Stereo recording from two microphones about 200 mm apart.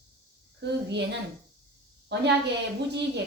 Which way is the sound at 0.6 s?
60° right (ahead or behind).